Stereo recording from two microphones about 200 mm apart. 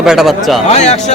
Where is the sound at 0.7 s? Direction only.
35° left (ahead or behind).